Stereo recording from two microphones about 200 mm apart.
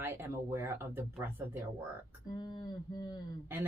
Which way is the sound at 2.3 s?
20° left (ahead or behind).